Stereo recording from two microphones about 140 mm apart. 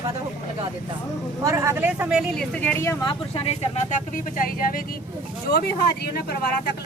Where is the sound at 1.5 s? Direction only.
20° right (ahead or behind).